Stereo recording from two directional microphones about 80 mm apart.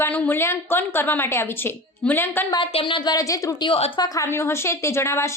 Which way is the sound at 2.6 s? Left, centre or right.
Left.